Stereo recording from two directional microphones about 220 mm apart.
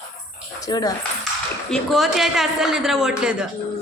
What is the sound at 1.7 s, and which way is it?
A man's voice, centre (ahead or behind).